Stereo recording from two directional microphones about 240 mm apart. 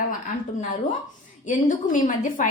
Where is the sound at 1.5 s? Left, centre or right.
Left.